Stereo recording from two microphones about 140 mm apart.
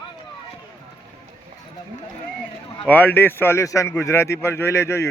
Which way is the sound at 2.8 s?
15° left (ahead or behind).